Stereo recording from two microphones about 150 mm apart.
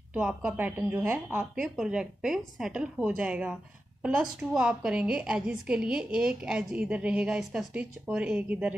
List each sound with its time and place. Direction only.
0.1 s a woman's voice: 10° right (ahead or behind)